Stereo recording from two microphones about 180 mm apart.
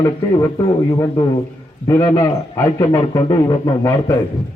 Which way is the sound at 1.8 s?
15° left (ahead or behind).